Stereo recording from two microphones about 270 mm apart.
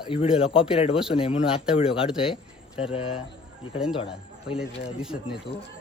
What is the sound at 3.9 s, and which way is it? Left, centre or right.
Speech, centre.